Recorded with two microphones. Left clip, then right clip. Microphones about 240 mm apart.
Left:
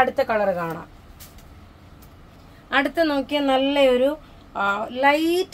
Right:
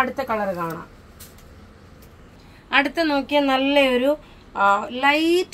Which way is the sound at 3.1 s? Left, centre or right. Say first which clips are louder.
Right 1 dB; centre.